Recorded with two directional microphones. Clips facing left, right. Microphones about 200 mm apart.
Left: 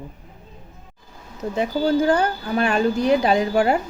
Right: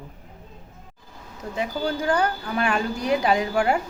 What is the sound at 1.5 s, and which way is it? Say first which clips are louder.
A woman's voice: left 7 dB; 30° left (ahead or behind).